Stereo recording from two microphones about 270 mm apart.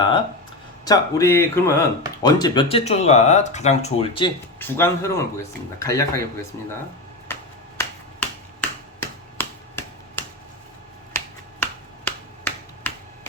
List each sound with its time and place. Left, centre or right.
0.9 s speech: centre
4.6 s speech: centre
7.8 s finger snapping: centre